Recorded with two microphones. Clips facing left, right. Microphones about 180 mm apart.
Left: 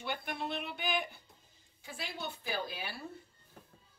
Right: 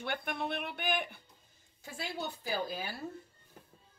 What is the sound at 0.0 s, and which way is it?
Speech, 55° right (ahead or behind).